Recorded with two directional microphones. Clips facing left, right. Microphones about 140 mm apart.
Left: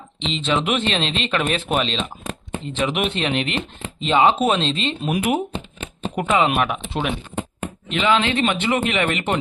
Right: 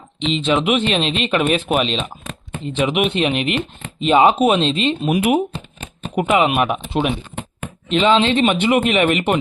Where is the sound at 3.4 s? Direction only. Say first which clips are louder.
Right 4 dB; 25° left (ahead or behind).